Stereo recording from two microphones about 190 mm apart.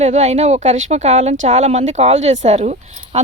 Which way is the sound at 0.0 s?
35° right (ahead or behind).